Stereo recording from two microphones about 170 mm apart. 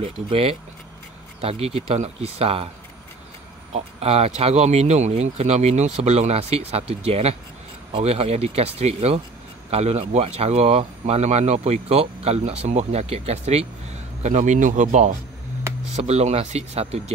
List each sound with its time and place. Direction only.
0.0 s speech: 35° right (ahead or behind)
3.7 s speech: 35° right (ahead or behind)